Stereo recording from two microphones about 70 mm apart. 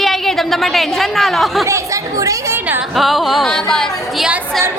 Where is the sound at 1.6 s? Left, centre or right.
Right.